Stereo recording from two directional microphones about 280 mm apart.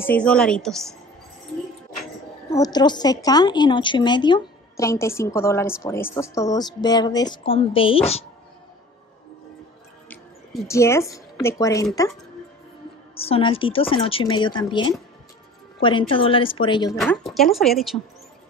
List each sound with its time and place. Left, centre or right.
0.0 s a woman's voice: centre
2.5 s a woman's voice: centre
10.0 s speech: centre
13.1 s a woman's voice: left
17.0 s a woman's voice: centre